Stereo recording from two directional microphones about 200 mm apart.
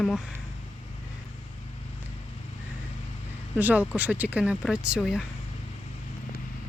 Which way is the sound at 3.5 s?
10° right (ahead or behind).